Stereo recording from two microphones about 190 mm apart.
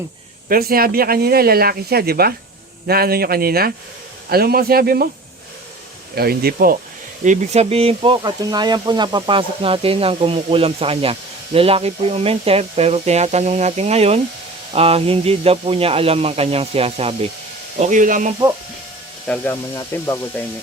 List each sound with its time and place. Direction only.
0.4 s speech: 50° right (ahead or behind)
6.1 s speech: 55° right (ahead or behind)
7.3 s speech: 35° right (ahead or behind)
19.3 s speech: 10° left (ahead or behind)